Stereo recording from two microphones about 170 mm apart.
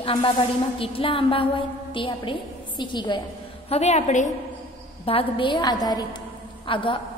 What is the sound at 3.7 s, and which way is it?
Speech, 40° left (ahead or behind).